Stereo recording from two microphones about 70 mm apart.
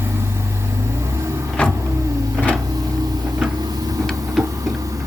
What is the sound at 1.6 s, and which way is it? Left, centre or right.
Power windows, centre.